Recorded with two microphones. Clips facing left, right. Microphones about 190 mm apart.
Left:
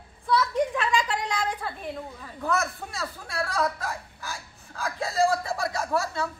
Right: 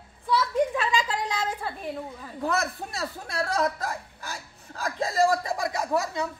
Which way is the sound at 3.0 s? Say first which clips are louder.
Right 1 dB; 20° right (ahead or behind).